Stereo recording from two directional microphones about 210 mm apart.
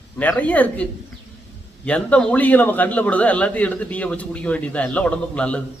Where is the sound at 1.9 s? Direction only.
5° left (ahead or behind).